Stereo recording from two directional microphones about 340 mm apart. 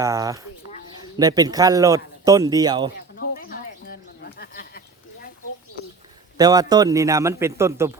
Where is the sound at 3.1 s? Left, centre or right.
Left.